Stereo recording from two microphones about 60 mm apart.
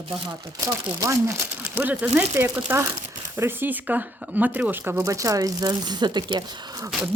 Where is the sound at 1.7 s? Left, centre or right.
Right.